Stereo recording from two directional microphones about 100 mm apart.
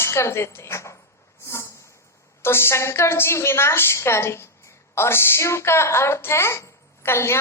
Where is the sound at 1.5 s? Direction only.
30° left (ahead or behind).